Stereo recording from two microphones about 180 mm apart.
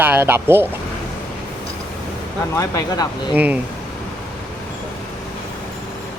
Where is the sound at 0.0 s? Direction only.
10° right (ahead or behind).